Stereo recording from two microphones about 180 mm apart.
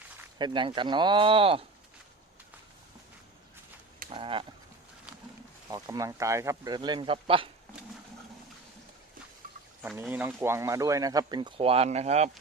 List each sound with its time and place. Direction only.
0.3 s speech: 25° right (ahead or behind)
4.1 s a sound: 30° right (ahead or behind)
5.7 s speech: 20° right (ahead or behind)
9.8 s speech: 10° right (ahead or behind); by 12.3 s 40° right (ahead or behind)